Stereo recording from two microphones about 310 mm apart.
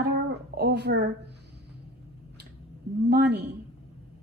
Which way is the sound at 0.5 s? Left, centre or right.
Right.